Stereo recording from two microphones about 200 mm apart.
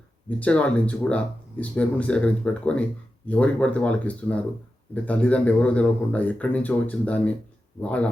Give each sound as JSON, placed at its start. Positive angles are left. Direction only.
{"t": 0.3, "sound": "speech", "side_deg": 5}